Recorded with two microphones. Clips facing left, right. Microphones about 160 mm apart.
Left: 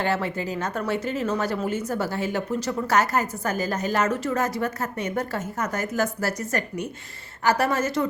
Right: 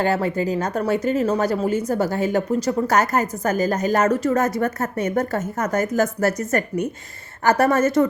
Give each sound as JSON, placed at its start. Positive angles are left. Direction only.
{"t": 0.0, "sound": "a woman's voice", "side_deg": -40}